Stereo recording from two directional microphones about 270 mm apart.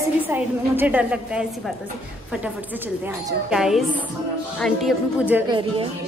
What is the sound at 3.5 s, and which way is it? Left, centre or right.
A woman's voice, centre.